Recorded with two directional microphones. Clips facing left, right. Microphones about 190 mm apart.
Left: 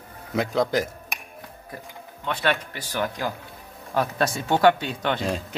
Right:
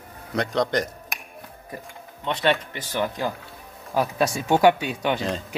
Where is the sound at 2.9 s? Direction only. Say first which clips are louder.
Right 2 dB; 10° right (ahead or behind).